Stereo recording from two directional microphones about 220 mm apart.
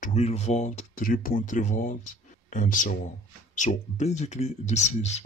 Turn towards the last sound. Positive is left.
turn(degrees=30)  # may be behind; listen again after turning